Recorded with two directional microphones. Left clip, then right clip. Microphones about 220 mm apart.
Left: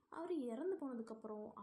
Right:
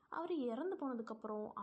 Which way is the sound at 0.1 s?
20° right (ahead or behind).